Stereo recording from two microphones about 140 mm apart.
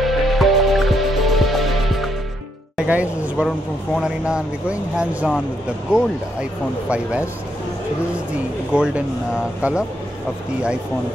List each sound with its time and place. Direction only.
0.0 s music: centre (ahead or behind)
2.8 s speech: 10° right (ahead or behind)
8.7 s speech: 10° right (ahead or behind)